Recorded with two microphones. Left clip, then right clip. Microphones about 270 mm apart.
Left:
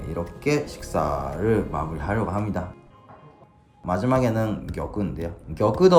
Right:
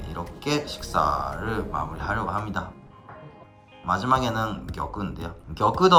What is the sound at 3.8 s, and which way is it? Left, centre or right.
Speech, centre.